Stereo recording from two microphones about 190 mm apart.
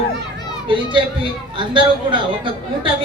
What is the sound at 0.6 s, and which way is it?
A woman's voice, 25° right (ahead or behind).